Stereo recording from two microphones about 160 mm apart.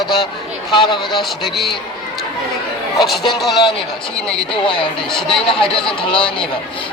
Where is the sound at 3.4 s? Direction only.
Centre (ahead or behind).